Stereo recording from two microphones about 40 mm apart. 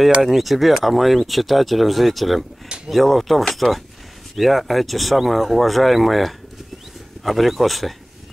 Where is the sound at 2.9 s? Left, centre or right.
Centre.